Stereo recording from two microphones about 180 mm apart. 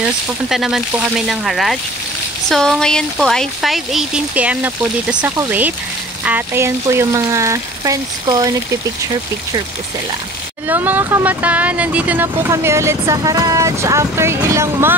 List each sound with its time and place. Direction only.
0.0 s speech: centre (ahead or behind); by 8.5 s 20° right (ahead or behind)
10.7 s speech: 10° right (ahead or behind)